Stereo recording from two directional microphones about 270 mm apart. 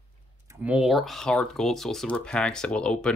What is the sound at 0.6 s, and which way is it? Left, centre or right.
Speech, centre.